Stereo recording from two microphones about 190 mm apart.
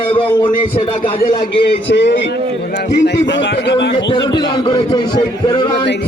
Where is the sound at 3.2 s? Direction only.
70° left (ahead or behind).